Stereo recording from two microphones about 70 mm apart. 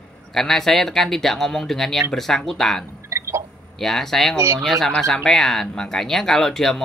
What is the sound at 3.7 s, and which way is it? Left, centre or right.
Speech, centre.